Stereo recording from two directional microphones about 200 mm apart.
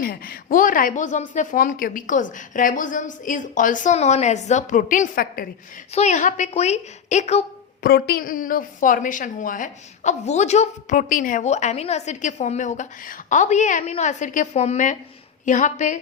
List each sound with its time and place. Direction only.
0.0 s a woman's voice: 45° left (ahead or behind)
5.9 s a woman's voice: 35° left (ahead or behind)
7.9 s a woman's voice: 50° left (ahead or behind)